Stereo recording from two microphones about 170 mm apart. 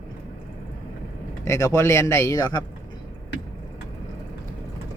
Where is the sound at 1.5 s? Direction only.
15° left (ahead or behind).